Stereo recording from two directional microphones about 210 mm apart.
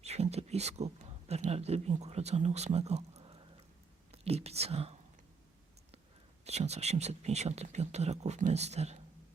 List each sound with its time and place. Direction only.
0.0 s speech: 30° right (ahead or behind)
6.4 s speech: 30° right (ahead or behind)